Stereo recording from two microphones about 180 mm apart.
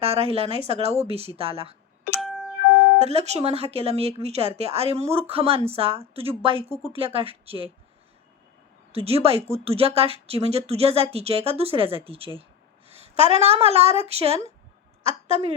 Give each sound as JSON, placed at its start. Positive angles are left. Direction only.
{"t": 0.0, "sound": "speech", "side_deg": -35}
{"t": 2.2, "sound": "music", "side_deg": 0}
{"t": 3.0, "sound": "speech", "side_deg": -35}
{"t": 8.9, "sound": "speech", "side_deg": -35}
{"t": 12.9, "sound": "a sound", "side_deg": -35}
{"t": 13.3, "sound": "a woman's voice", "side_deg": -35}